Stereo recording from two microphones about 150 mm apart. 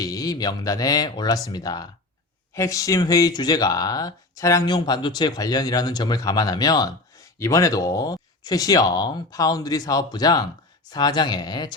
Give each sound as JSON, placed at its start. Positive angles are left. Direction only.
{"t": 0.0, "sound": "speech", "side_deg": 25}